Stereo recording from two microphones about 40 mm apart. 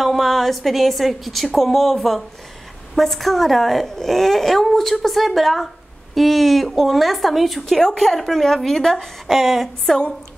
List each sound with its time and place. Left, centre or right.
0.0 s a woman's voice: centre
8.9 s speech: centre
9.8 s a woman's voice: centre